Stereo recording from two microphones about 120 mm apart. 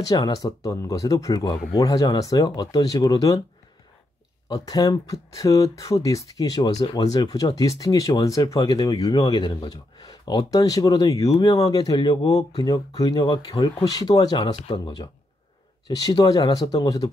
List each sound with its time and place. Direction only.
0.1 s speech: 35° left (ahead or behind)
4.5 s speech: 30° left (ahead or behind)